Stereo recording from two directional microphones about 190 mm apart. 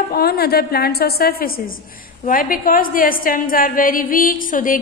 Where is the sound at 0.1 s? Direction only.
55° left (ahead or behind).